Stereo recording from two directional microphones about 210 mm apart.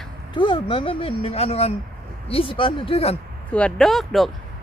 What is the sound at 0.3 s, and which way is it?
Speech, 25° left (ahead or behind).